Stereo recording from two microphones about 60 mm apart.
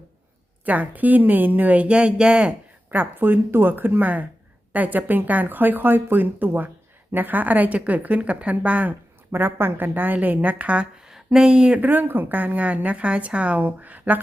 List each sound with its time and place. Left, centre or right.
0.6 s speech: right
2.9 s speech: right
9.3 s speech: right
11.0 s speech: centre
11.8 s speech: right